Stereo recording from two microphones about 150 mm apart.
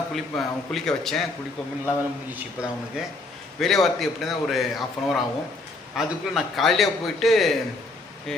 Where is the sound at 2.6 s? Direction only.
5° right (ahead or behind).